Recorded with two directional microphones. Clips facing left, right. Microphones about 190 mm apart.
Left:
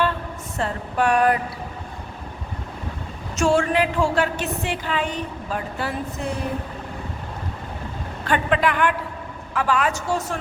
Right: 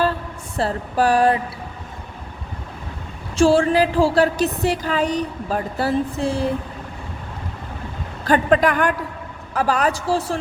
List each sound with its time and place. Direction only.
0.5 s a woman's voice: 35° right (ahead or behind)
3.3 s a woman's voice: 35° right (ahead or behind)
8.2 s a woman's voice: 40° right (ahead or behind)